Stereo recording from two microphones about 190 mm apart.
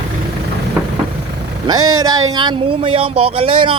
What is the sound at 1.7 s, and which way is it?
Speech, 20° right (ahead or behind).